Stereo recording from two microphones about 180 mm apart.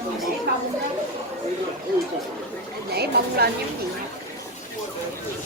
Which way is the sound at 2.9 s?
60° right (ahead or behind).